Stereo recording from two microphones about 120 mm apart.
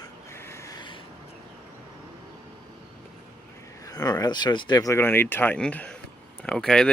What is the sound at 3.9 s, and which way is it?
Speech, 30° left (ahead or behind).